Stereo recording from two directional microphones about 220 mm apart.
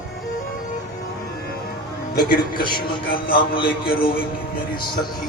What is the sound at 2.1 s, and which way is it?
Speech, 40° left (ahead or behind).